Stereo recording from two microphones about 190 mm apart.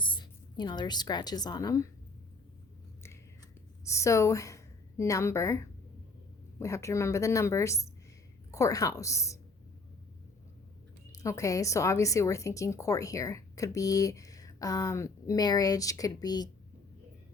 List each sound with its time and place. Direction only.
0.0 s a woman's voice: 25° left (ahead or behind)
3.8 s a woman's voice: 15° left (ahead or behind)
11.1 s speech: 15° left (ahead or behind)